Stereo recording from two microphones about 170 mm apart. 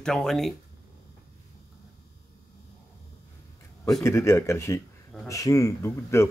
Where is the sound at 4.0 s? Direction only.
15° left (ahead or behind).